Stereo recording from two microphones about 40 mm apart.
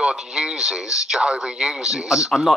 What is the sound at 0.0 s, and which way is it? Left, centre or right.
Speech, centre.